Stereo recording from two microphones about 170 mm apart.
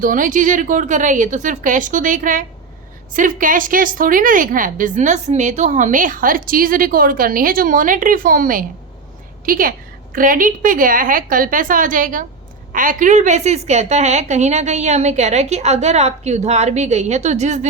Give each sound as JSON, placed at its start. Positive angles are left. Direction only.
{"t": 0.0, "sound": "a woman's voice", "side_deg": -50}